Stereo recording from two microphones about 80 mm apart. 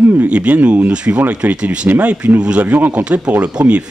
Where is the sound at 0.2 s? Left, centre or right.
Centre.